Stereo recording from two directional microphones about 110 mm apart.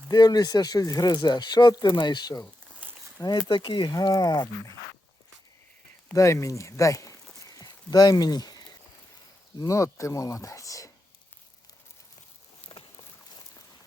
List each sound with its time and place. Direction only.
0.1 s speech: 35° left (ahead or behind)
2.8 s a sound: 15° right (ahead or behind)
3.2 s speech: 35° left (ahead or behind)
3.5 s speech: 50° left (ahead or behind)
3.9 s speech: 30° left (ahead or behind)
6.1 s speech: 25° left (ahead or behind)
12.6 s boat: 10° left (ahead or behind)